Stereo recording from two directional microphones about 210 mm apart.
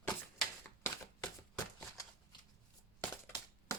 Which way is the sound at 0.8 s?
15° left (ahead or behind).